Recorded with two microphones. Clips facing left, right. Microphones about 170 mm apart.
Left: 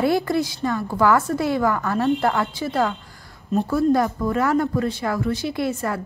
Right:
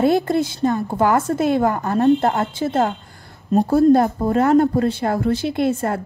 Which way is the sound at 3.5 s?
35° right (ahead or behind).